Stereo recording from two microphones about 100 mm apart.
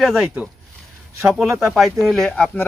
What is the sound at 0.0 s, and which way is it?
Speech, centre (ahead or behind).